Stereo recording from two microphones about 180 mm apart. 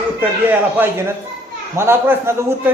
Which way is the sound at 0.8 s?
15° right (ahead or behind).